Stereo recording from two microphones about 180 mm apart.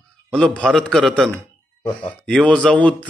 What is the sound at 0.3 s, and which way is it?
Speech, 5° left (ahead or behind).